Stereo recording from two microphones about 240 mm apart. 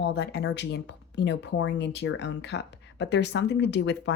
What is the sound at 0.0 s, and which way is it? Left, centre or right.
Speech, left.